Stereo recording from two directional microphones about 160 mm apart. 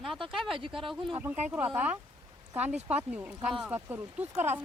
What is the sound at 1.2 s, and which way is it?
Speech, 10° right (ahead or behind).